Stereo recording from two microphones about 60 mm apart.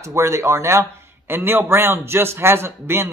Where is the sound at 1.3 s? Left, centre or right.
Right.